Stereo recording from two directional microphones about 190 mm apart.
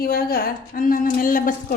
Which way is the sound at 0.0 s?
50° left (ahead or behind).